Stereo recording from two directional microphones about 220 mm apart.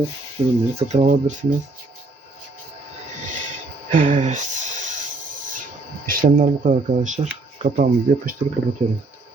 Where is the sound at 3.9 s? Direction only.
35° right (ahead or behind).